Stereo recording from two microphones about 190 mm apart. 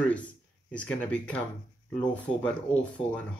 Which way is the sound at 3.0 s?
25° left (ahead or behind).